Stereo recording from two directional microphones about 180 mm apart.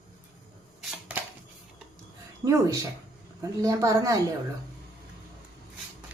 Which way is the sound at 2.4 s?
20° right (ahead or behind).